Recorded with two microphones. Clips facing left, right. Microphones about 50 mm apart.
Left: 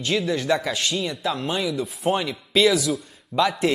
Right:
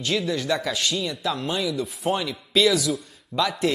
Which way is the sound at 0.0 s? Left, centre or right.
Centre.